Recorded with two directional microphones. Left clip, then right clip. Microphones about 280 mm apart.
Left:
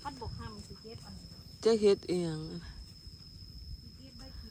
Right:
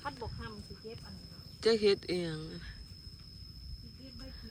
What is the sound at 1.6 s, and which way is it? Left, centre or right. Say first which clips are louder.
Speech: left 2 dB; centre.